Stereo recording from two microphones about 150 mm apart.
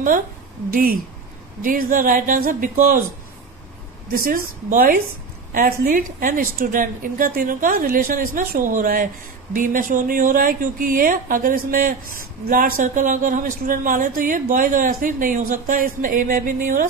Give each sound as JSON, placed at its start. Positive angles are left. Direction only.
{"t": 0.7, "sound": "a woman's voice", "side_deg": -75}
{"t": 4.1, "sound": "a woman's voice", "side_deg": -70}